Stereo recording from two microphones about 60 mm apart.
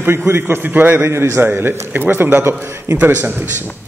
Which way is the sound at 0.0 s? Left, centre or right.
Right.